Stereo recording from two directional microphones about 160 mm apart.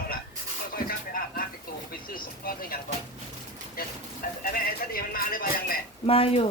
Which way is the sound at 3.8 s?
65° left (ahead or behind).